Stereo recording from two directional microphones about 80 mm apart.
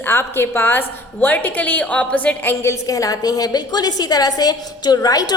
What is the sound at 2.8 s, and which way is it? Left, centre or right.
A woman's voice, left.